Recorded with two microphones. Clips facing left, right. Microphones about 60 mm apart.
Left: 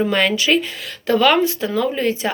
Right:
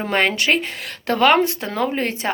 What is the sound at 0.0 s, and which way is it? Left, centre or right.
Speech, right.